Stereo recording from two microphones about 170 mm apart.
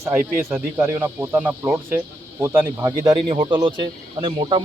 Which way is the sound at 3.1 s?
30° right (ahead or behind).